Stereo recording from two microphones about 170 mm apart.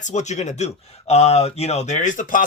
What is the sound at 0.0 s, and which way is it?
Speech, 45° left (ahead or behind).